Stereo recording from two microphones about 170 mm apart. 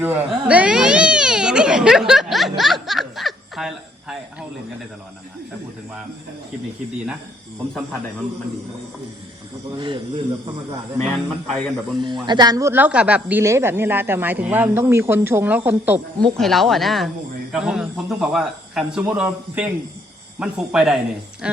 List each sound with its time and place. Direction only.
0.0 s speech: 10° right (ahead or behind)
9.7 s a man's voice: 30° right (ahead or behind)
11.1 s a man's voice: centre (ahead or behind)
12.0 s speech: 25° right (ahead or behind); by 16.0 s 10° right (ahead or behind)
16.2 s a man's voice: centre (ahead or behind)